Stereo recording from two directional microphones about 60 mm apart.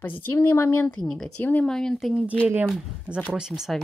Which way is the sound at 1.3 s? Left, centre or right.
Left.